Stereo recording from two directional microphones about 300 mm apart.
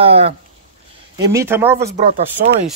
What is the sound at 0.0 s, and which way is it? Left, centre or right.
Speech, centre.